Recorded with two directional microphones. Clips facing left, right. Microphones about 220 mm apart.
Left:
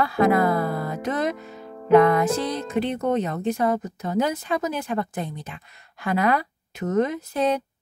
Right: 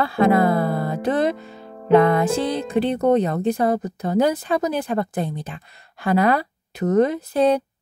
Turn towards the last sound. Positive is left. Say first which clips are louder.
# right 5 dB
turn(degrees=-35)  # may be behind; listen again after turning